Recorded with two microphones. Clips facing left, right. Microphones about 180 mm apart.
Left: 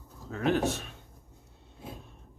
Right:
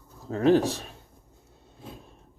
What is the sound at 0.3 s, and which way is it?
Speech, 35° right (ahead or behind).